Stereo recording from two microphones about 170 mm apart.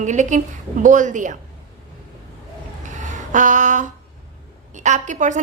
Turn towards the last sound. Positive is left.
turn(degrees=-45)  # may be behind; listen again after turning